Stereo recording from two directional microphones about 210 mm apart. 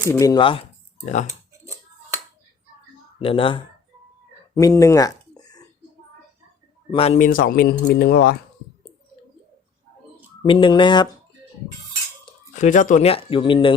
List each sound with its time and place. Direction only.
0.1 s speech: 15° left (ahead or behind)
3.2 s speech: 25° left (ahead or behind)
4.5 s a sound: 15° left (ahead or behind)
6.9 s speech: 30° left (ahead or behind); by 8.4 s 45° left (ahead or behind)
10.4 s speech: 20° left (ahead or behind)
12.5 s speech: 35° left (ahead or behind)